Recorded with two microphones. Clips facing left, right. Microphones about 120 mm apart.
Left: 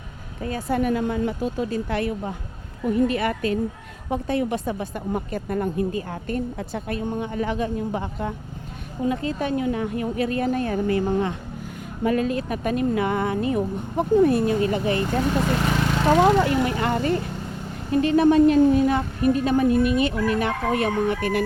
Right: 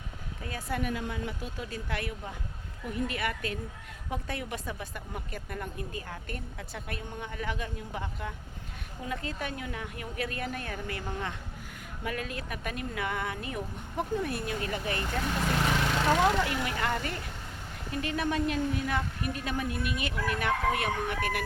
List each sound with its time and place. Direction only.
0.4 s a woman's voice: 35° left (ahead or behind)